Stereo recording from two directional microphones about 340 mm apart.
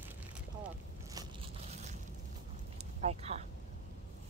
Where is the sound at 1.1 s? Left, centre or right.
Centre.